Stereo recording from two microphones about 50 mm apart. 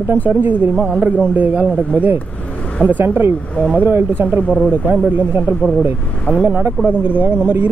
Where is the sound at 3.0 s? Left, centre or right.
Right.